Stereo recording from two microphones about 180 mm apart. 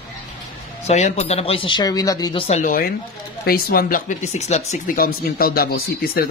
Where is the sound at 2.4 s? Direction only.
40° left (ahead or behind).